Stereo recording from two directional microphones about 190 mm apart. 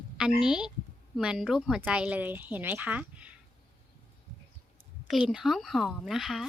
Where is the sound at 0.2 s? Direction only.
5° right (ahead or behind).